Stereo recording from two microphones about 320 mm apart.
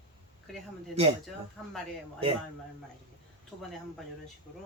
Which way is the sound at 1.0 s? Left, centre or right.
Centre.